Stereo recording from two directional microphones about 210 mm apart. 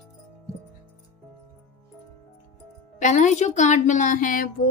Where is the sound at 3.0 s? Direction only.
35° left (ahead or behind).